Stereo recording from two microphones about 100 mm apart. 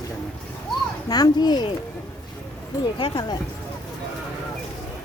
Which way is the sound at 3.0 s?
45° left (ahead or behind).